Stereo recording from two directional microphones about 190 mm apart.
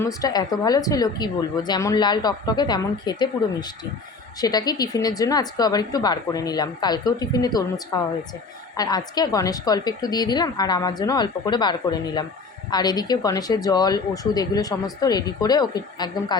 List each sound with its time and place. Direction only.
0.0 s speech: 20° left (ahead or behind)
4.4 s speech: 20° left (ahead or behind)